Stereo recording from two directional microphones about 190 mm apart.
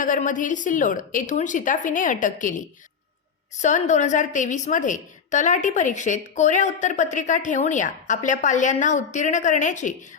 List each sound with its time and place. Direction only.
0.0 s a woman's voice: 45° left (ahead or behind)